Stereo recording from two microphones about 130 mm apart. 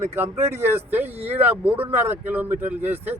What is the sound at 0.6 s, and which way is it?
A man's voice, 20° right (ahead or behind).